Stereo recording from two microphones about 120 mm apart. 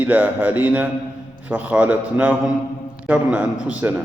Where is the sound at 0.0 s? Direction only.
15° right (ahead or behind).